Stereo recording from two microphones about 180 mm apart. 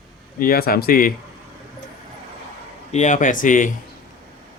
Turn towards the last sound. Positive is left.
turn(degrees=45)  # may be behind; listen again after turning